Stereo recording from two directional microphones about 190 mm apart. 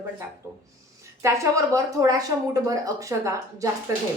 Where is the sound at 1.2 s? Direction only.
15° right (ahead or behind).